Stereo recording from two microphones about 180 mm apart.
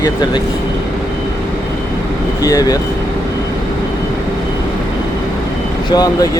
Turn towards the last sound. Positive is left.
turn(degrees=20)  # may be behind; listen again after turning